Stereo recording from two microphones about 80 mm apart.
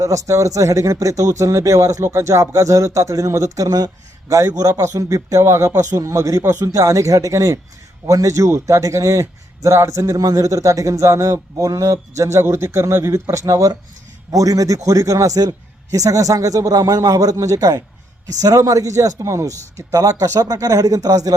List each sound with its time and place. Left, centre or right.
0.0 s speech: right